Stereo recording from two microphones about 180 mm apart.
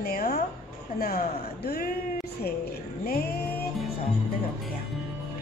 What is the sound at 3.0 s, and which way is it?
Speech, 55° left (ahead or behind).